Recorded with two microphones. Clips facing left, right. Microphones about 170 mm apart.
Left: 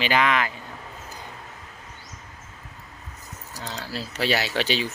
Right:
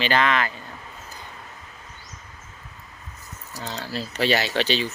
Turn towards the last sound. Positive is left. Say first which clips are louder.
# right 2 dB
turn(degrees=10)  # may be behind; listen again after turning